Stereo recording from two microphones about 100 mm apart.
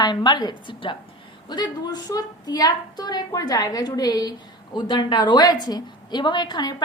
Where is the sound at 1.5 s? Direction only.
45° left (ahead or behind).